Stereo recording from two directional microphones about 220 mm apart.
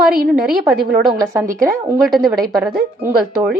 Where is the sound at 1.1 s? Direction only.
15° right (ahead or behind).